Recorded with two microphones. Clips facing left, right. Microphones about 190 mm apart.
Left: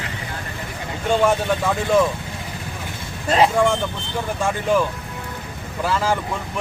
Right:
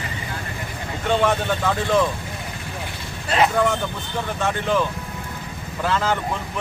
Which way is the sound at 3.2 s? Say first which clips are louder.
Left 3 dB; 35° left (ahead or behind).